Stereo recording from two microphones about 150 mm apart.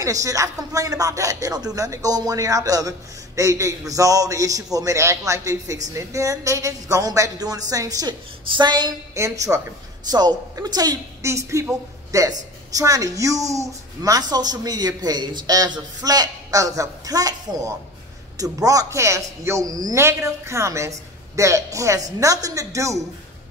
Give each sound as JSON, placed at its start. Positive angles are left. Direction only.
{"t": 0.0, "sound": "speech", "side_deg": -20}